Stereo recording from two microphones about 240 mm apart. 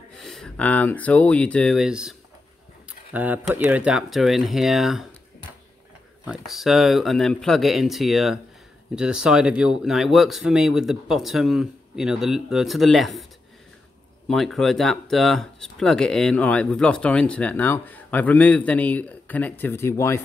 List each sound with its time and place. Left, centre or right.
0.2 s speech: centre
6.2 s speech: centre